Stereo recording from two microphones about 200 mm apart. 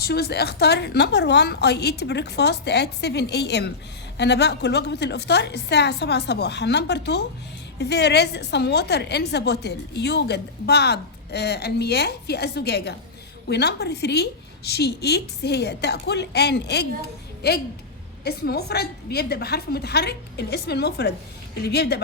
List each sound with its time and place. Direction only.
0.0 s a woman's voice: 55° left (ahead or behind)